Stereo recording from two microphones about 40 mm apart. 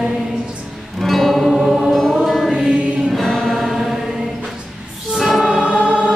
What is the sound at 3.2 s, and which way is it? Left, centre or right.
Chant, centre.